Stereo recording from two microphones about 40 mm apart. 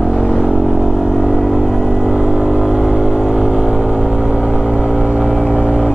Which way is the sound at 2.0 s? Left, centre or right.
Right.